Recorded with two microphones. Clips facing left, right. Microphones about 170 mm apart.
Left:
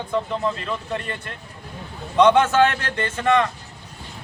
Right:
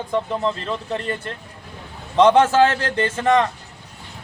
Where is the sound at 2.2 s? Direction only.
30° right (ahead or behind).